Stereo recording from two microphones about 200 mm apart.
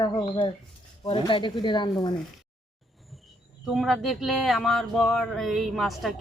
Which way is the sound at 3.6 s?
Centre (ahead or behind).